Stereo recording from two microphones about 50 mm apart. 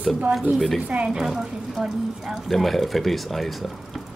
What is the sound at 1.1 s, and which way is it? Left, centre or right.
A woman's voice, centre.